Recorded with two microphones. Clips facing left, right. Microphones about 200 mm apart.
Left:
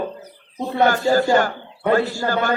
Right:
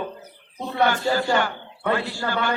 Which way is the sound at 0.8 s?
45° left (ahead or behind).